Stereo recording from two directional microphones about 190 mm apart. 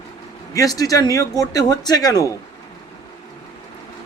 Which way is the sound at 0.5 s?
20° left (ahead or behind).